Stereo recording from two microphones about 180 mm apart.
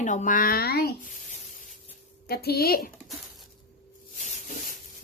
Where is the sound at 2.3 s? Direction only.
60° left (ahead or behind).